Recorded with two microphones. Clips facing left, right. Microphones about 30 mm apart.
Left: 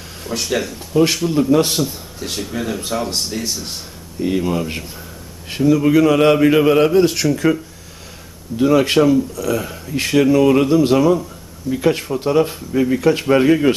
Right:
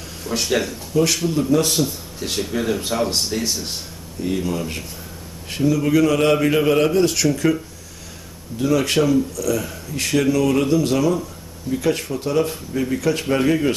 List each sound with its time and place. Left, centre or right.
0.3 s speech: centre
0.9 s speech: centre
1.8 s speech: centre
4.2 s a man's voice: centre
8.5 s a man's voice: left